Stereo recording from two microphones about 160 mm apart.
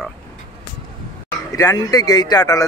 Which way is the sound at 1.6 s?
20° left (ahead or behind).